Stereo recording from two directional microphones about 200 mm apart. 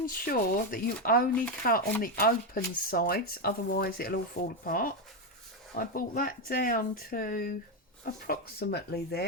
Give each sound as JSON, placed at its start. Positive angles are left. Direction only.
{"t": 0.0, "sound": "speech", "side_deg": 45}